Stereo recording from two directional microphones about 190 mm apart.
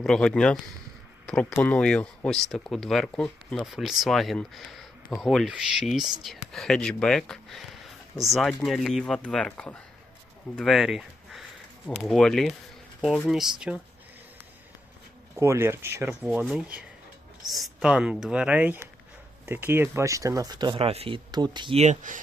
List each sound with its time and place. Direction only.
0.0 s speech: 5° left (ahead or behind)
15.4 s speech: 15° right (ahead or behind); by 22.2 s 40° right (ahead or behind)